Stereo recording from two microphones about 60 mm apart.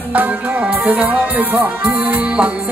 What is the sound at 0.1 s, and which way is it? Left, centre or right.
Music, right.